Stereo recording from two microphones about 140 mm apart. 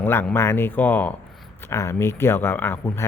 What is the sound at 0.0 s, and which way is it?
Speech, 15° left (ahead or behind).